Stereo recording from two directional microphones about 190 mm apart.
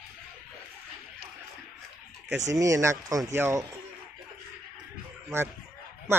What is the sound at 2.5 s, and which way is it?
Speech, 15° right (ahead or behind).